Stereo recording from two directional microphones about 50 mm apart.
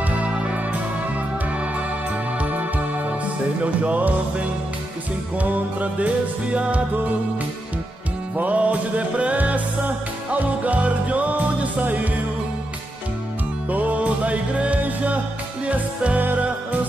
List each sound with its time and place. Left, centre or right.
0.2 s music: right
3.6 s music: right
5.4 s music: right
8.4 s music: right
13.7 s music: right
16.2 s music: right